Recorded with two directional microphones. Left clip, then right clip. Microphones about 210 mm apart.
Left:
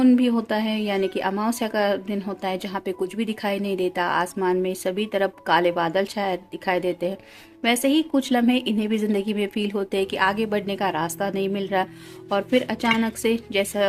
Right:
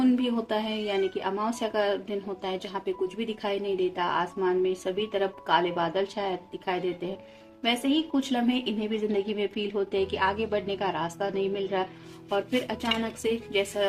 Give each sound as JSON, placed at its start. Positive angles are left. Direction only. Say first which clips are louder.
{"t": 0.0, "sound": "speech", "louder": "left 6 dB", "side_deg": 50}